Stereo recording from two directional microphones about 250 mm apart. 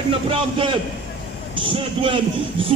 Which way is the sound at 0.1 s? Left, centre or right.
Right.